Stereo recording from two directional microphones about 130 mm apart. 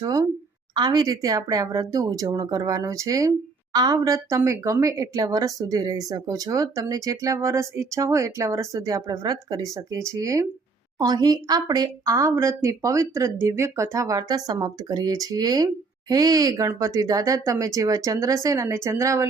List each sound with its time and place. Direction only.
0.0 s a woman's voice: 25° right (ahead or behind)